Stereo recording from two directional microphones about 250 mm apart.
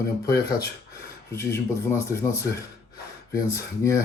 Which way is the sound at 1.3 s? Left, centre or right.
Centre.